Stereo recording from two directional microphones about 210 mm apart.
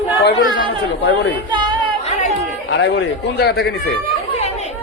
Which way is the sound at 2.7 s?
55° left (ahead or behind).